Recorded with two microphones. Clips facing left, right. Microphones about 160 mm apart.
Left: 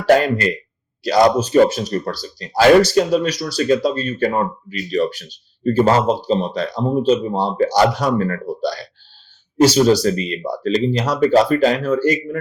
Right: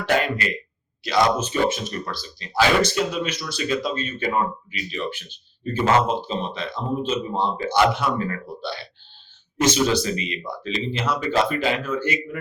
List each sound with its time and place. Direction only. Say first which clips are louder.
0.0 s speech: left 8 dB; 40° left (ahead or behind)